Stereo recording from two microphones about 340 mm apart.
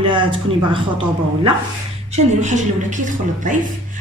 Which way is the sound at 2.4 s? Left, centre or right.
Right.